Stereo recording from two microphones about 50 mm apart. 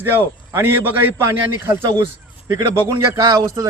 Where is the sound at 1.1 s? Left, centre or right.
Right.